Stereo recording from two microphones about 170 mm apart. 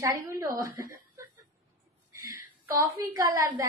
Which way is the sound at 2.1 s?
20° right (ahead or behind).